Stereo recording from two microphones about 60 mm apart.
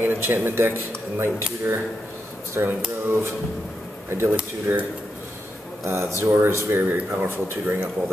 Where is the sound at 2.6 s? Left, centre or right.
Right.